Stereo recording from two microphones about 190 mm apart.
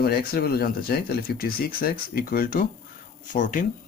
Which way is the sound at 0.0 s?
55° left (ahead or behind).